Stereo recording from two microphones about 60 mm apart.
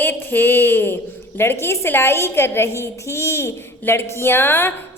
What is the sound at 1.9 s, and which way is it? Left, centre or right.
A child's voice, left.